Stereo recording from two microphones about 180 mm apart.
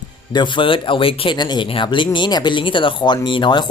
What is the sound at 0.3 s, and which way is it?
Speech, 25° left (ahead or behind).